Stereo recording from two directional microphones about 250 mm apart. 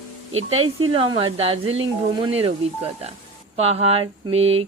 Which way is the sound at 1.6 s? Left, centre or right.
Right.